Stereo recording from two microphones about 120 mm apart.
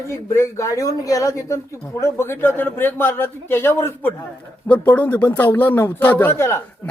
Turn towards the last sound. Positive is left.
turn(degrees=20)  # may be behind; listen again after turning